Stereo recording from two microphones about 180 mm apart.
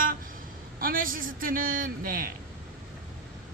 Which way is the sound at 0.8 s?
50° right (ahead or behind).